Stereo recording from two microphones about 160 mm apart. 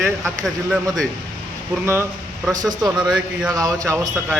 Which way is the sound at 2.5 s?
25° right (ahead or behind).